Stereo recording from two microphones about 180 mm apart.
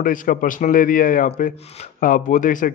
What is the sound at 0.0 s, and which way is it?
Speech, 50° left (ahead or behind).